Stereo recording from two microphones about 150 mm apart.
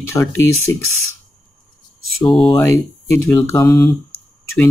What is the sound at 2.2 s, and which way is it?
Speech, 30° left (ahead or behind).